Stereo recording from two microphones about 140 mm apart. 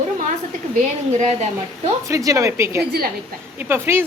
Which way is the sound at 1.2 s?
55° right (ahead or behind).